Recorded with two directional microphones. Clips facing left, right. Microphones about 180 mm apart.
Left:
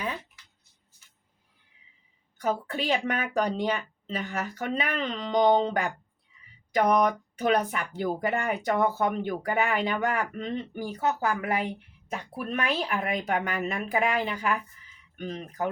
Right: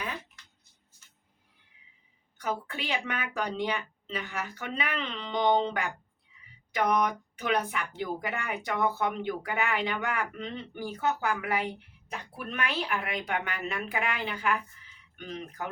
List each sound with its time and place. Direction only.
2.4 s a woman's voice: 40° left (ahead or behind)